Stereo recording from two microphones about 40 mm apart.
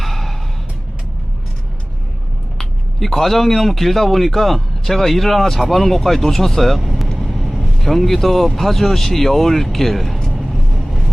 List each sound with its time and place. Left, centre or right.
0.0 s music: centre
2.6 s speech: centre
10.5 s vehicle: centre